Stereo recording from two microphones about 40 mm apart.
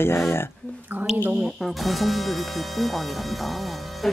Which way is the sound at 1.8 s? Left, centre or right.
Centre.